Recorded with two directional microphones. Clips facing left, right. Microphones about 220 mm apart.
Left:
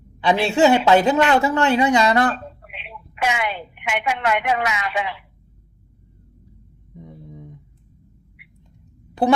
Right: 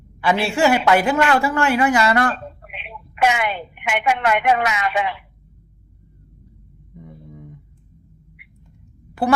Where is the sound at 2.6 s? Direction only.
55° right (ahead or behind).